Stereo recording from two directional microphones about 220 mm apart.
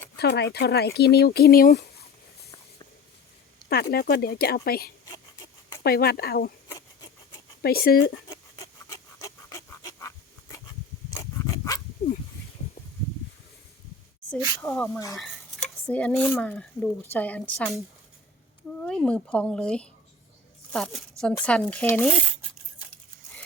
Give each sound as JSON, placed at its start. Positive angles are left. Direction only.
{"t": 0.2, "sound": "speech", "side_deg": 50}
{"t": 3.6, "sound": "a sound", "side_deg": 20}
{"t": 3.9, "sound": "speech", "side_deg": 45}
{"t": 7.6, "sound": "speech", "side_deg": 45}
{"t": 8.3, "sound": "rub", "side_deg": 15}
{"t": 11.1, "sound": "dog", "side_deg": 15}
{"t": 14.2, "sound": "snake", "side_deg": 5}
{"t": 14.6, "sound": "speech", "side_deg": 5}